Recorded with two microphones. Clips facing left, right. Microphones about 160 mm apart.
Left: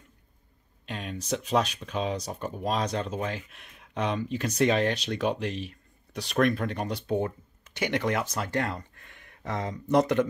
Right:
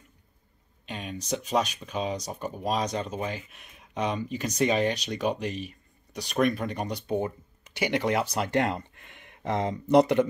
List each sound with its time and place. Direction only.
0.8 s speech: centre (ahead or behind)